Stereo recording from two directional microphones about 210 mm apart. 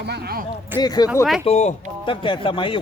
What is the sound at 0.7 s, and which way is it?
Speech, 20° left (ahead or behind).